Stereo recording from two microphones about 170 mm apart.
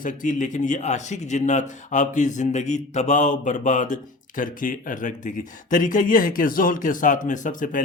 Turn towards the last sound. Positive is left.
turn(degrees=50)  # may be behind; listen again after turning